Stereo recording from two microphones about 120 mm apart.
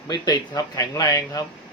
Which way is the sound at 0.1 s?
35° left (ahead or behind).